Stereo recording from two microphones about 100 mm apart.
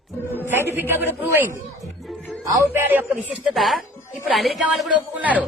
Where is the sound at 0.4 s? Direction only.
20° right (ahead or behind).